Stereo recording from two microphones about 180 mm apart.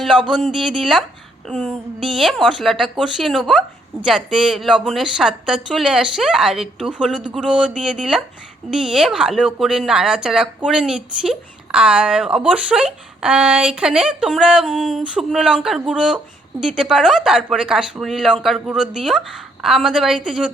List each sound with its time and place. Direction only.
0.0 s speech: 5° right (ahead or behind)